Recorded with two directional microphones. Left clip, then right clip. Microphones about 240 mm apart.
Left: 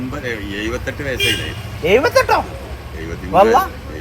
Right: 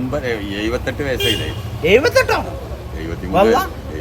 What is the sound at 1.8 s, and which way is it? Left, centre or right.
A man's voice, centre.